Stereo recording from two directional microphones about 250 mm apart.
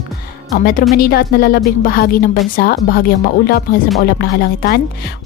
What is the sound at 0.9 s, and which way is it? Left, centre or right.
A woman's voice, left.